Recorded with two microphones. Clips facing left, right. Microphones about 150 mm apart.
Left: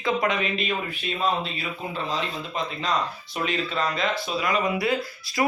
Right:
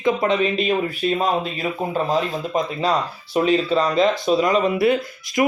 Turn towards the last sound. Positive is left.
turn(degrees=-25)  # may be behind; listen again after turning